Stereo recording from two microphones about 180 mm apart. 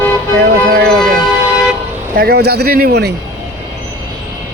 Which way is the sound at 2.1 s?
60° right (ahead or behind).